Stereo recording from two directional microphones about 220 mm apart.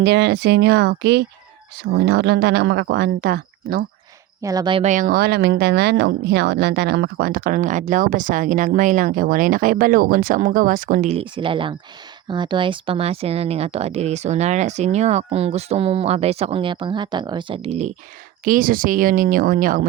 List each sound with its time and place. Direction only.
0.0 s speech: 50° right (ahead or behind)
4.4 s speech: 20° right (ahead or behind); by 11.2 s 35° right (ahead or behind)
11.2 s speech: 25° right (ahead or behind)
18.4 s speech: 40° right (ahead or behind)